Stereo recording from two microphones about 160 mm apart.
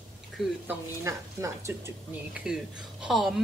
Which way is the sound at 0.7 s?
20° right (ahead or behind).